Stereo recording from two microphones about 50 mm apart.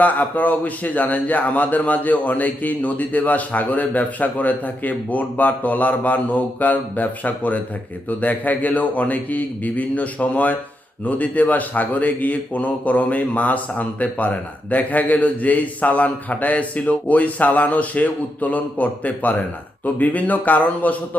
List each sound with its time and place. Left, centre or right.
0.0 s a man's voice: left